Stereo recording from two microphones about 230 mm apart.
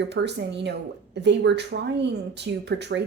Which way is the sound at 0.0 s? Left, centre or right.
Right.